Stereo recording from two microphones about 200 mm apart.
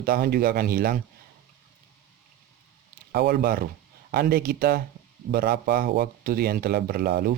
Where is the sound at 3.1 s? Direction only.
50° right (ahead or behind).